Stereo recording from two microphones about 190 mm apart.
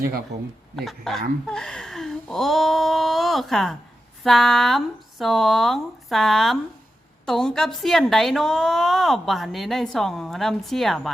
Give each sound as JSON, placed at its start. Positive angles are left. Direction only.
{"t": 0.3, "sound": "speech", "side_deg": -65}
{"t": 0.8, "sound": "a woman's voice", "side_deg": 0}
{"t": 1.5, "sound": "a sound", "side_deg": 5}
{"t": 4.2, "sound": "a woman's voice", "side_deg": 0}